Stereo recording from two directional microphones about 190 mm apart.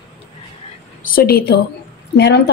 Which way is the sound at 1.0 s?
50° left (ahead or behind).